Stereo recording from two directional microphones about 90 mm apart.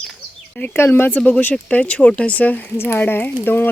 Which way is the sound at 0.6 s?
20° left (ahead or behind).